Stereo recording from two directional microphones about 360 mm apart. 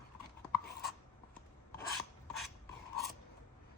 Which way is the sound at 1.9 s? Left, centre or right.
Centre.